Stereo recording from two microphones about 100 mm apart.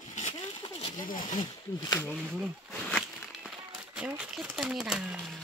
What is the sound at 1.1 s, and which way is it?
Speech, 45° left (ahead or behind).